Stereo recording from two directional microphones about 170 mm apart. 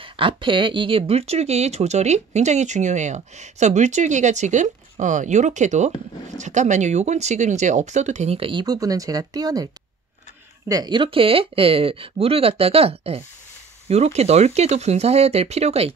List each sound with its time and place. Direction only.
0.0 s speech: 30° right (ahead or behind)
10.7 s speech: 25° right (ahead or behind)